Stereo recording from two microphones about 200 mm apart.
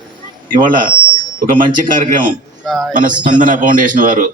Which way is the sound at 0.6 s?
45° right (ahead or behind).